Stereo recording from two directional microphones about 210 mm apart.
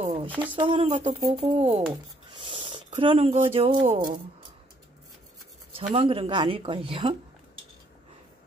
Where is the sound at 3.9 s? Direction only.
40° right (ahead or behind).